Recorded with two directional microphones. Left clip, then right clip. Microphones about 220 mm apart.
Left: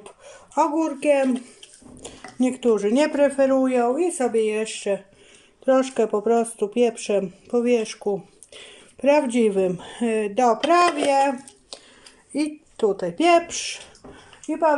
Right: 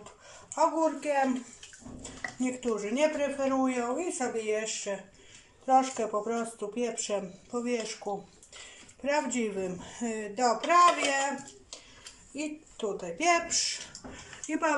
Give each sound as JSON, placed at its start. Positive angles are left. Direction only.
{"t": 0.6, "sound": "speech", "side_deg": 45}
{"t": 2.4, "sound": "speech", "side_deg": 45}
{"t": 9.0, "sound": "speech", "side_deg": 50}
{"t": 12.4, "sound": "a woman's voice", "side_deg": 45}